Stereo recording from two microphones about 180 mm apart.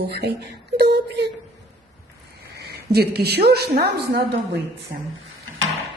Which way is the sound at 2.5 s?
65° right (ahead or behind).